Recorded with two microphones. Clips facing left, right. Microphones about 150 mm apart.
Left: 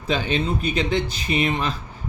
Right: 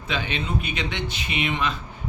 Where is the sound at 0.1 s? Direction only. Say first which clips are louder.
Left 5 dB; 35° left (ahead or behind).